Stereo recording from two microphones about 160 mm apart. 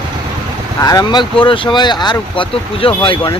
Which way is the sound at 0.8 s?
25° left (ahead or behind).